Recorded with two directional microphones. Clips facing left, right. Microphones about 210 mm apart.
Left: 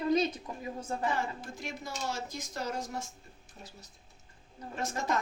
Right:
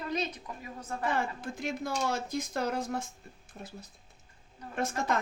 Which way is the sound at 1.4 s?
55° right (ahead or behind).